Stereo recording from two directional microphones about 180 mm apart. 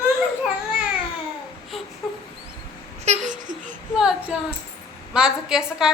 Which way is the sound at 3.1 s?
45° right (ahead or behind).